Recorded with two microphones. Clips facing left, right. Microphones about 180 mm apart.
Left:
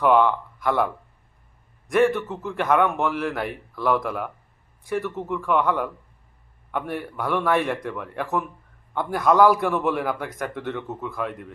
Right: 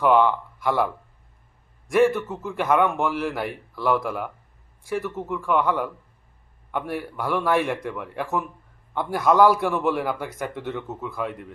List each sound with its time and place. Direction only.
0.0 s a man's voice: centre (ahead or behind)
1.9 s a man's voice: centre (ahead or behind)